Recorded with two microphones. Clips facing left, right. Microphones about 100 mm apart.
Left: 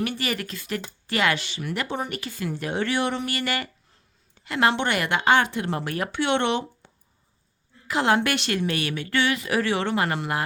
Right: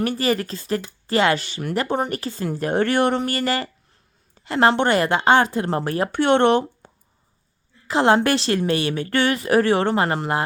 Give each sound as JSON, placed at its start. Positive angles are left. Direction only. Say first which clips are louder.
{"t": 0.0, "sound": "speech", "louder": "right 6 dB", "side_deg": -35}
{"t": 6.1, "sound": "speech", "louder": "right 7 dB", "side_deg": -45}
{"t": 7.9, "sound": "speech", "louder": "right 5 dB", "side_deg": -30}